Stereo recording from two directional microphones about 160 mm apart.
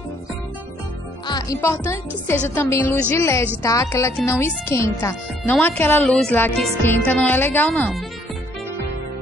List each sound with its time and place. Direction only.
1.2 s music: 25° left (ahead or behind)
1.6 s speech: 15° left (ahead or behind)